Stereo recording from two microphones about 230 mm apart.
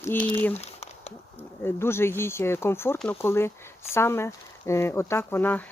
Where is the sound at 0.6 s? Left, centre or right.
Left.